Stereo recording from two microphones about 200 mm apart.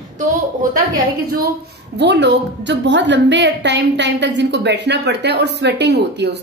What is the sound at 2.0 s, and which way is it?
A woman's voice, 60° right (ahead or behind).